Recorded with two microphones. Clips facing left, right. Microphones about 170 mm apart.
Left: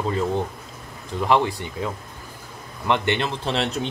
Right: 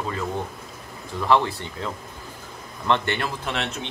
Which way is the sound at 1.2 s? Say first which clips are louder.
Left 1 dB; 15° left (ahead or behind).